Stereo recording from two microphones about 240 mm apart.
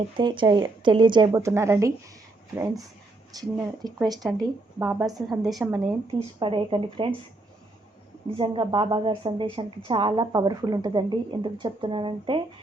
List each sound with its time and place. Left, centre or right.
0.2 s a woman's voice: centre
3.3 s a woman's voice: centre
5.4 s a woman's voice: centre
6.4 s a woman's voice: right
8.4 s a woman's voice: right